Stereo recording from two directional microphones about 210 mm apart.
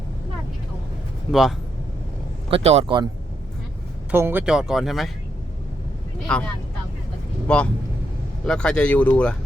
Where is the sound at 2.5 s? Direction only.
30° right (ahead or behind).